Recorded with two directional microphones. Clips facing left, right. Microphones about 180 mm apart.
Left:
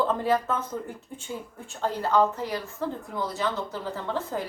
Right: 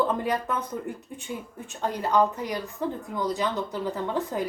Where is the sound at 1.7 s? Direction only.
15° right (ahead or behind).